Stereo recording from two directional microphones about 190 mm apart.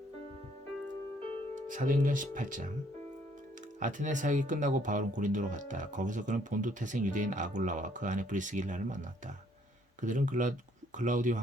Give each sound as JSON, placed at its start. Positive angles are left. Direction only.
{"t": 1.5, "sound": "speech", "side_deg": -45}
{"t": 3.8, "sound": "speech", "side_deg": -40}